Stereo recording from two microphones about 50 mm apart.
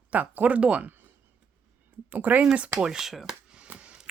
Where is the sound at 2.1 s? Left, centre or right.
Right.